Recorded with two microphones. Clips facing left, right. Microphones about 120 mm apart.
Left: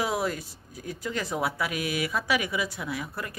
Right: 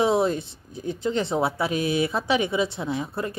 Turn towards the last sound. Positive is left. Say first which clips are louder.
# right 6 dB
turn(degrees=-25)  # may be behind; listen again after turning